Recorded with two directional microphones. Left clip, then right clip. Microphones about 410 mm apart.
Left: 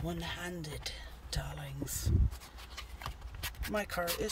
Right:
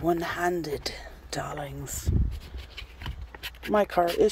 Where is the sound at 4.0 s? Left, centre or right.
Right.